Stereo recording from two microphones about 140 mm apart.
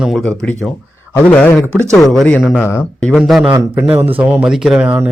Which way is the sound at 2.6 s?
20° left (ahead or behind).